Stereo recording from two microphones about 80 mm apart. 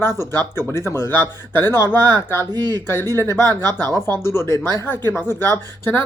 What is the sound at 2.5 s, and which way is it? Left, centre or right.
Speech, right.